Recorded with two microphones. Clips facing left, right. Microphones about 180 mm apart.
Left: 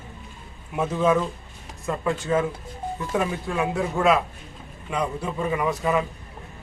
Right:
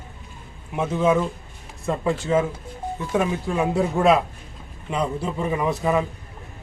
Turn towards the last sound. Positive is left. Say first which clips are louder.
# right 2 dB
turn(degrees=-25)  # may be behind; listen again after turning